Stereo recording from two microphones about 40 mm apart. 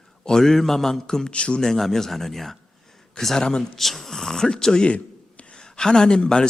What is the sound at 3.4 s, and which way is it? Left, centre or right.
Speech, centre.